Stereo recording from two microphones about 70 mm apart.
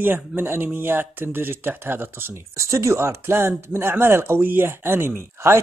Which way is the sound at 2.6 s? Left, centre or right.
Right.